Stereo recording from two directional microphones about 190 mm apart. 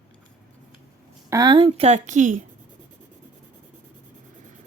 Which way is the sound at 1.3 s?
20° right (ahead or behind).